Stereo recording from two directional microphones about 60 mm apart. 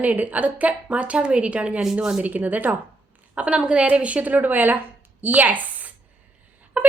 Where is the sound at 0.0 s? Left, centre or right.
Right.